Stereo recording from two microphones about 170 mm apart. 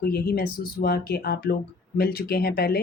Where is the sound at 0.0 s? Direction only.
60° left (ahead or behind).